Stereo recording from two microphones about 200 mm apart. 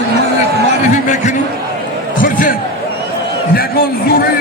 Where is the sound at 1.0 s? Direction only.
40° left (ahead or behind).